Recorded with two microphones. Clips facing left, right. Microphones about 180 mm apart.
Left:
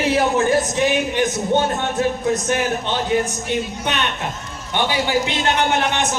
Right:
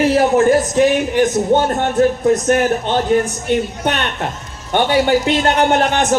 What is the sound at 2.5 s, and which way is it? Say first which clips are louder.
A man's voice: right 6 dB; 50° right (ahead or behind).